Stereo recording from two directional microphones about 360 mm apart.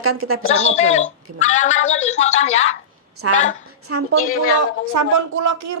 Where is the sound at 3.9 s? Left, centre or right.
Right.